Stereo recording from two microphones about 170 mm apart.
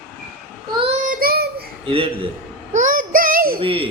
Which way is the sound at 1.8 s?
35° right (ahead or behind).